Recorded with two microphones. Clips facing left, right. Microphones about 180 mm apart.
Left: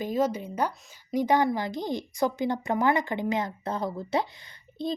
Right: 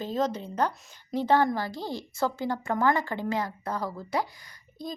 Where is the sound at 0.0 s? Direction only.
10° left (ahead or behind).